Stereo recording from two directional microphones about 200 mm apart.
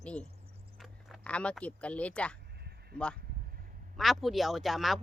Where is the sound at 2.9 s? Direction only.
5° left (ahead or behind).